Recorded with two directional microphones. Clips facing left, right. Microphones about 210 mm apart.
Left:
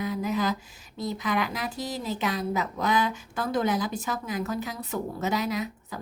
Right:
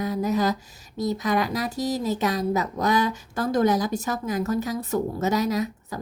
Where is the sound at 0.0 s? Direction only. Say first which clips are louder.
Right 4 dB; 40° right (ahead or behind).